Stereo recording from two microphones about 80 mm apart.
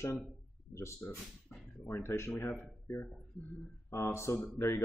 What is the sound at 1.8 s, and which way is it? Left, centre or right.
Speech, left.